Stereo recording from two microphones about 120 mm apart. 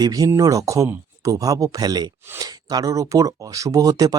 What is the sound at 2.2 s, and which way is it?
Speech, 20° right (ahead or behind).